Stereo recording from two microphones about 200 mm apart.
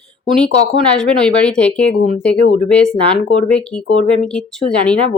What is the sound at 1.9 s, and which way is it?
Speech, 40° left (ahead or behind).